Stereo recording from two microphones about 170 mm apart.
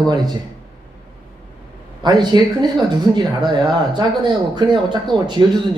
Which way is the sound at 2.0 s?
25° right (ahead or behind).